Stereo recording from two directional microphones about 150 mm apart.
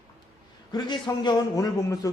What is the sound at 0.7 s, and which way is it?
A man's voice, 30° left (ahead or behind).